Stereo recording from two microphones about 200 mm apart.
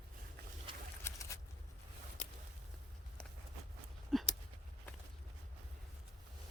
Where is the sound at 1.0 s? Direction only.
15° left (ahead or behind).